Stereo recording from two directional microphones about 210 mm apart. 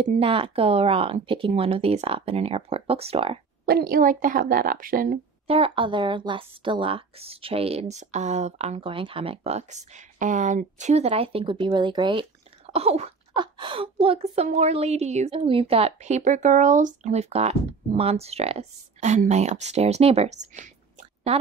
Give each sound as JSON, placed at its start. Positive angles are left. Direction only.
{"t": 0.0, "sound": "a woman's voice", "side_deg": -25}
{"t": 3.6, "sound": "speech", "side_deg": -45}
{"t": 5.5, "sound": "a woman's voice", "side_deg": -25}